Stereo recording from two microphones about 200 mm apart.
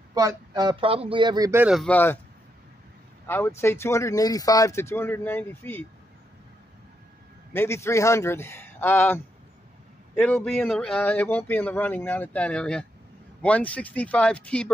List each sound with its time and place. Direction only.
0.1 s speech: 20° right (ahead or behind)
1.7 s speech: 5° left (ahead or behind)
3.3 s speech: 10° left (ahead or behind)
7.5 s speech: 15° left (ahead or behind)